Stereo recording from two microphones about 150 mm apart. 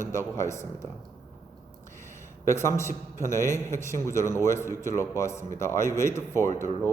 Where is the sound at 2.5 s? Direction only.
20° left (ahead or behind).